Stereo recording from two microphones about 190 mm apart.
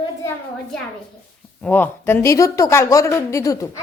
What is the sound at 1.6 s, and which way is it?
A child's voice, 10° left (ahead or behind).